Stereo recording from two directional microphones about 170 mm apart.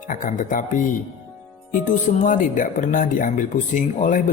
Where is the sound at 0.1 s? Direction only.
50° left (ahead or behind).